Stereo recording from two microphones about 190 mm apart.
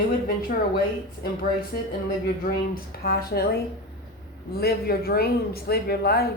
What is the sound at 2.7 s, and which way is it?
Speech, 50° left (ahead or behind).